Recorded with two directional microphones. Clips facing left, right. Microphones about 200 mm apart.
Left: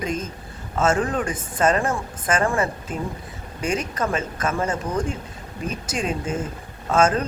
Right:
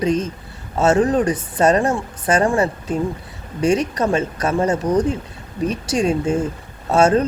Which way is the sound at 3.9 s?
35° right (ahead or behind).